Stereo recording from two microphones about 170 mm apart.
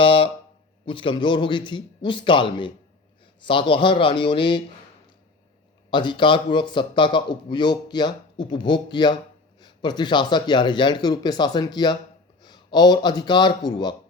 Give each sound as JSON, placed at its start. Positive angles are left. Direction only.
{"t": 0.0, "sound": "a sound", "side_deg": 30}
{"t": 0.9, "sound": "a man's voice", "side_deg": 30}
{"t": 5.9, "sound": "a man's voice", "side_deg": 30}